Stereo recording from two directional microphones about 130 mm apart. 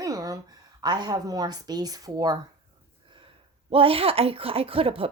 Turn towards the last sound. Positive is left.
turn(degrees=-45)  # may be behind; listen again after turning